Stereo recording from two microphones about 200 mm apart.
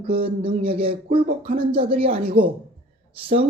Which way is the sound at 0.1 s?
30° right (ahead or behind).